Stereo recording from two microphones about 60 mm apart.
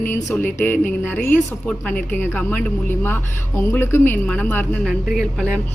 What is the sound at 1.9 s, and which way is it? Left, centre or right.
Speech, left.